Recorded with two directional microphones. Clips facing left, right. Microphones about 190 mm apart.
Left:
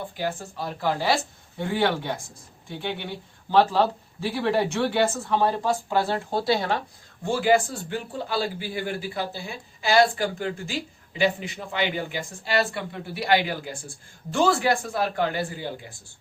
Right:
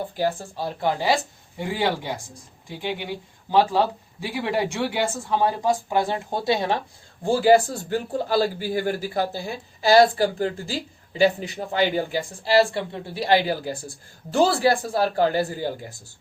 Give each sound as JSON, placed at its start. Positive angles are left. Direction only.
{"t": 0.2, "sound": "speech", "side_deg": -30}
{"t": 7.2, "sound": "a man's voice", "side_deg": -35}